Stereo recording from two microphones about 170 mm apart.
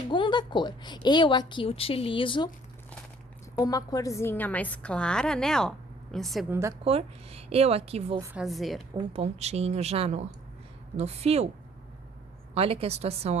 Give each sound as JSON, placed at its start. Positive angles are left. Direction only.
{"t": 0.1, "sound": "a woman's voice", "side_deg": 30}
{"t": 3.6, "sound": "a woman's voice", "side_deg": 20}
{"t": 6.5, "sound": "a woman's voice", "side_deg": -15}
{"t": 6.8, "sound": "a woman's voice", "side_deg": -35}
{"t": 8.4, "sound": "a woman's voice", "side_deg": 0}
{"t": 9.0, "sound": "a woman's voice", "side_deg": -35}
{"t": 12.5, "sound": "a woman's voice", "side_deg": -35}